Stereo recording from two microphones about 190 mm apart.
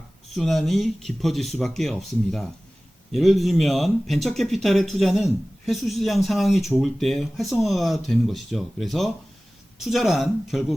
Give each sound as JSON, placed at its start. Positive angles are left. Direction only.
{"t": 0.3, "sound": "speech", "side_deg": 0}